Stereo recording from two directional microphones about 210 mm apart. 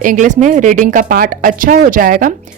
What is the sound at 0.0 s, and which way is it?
A woman's voice, 35° right (ahead or behind).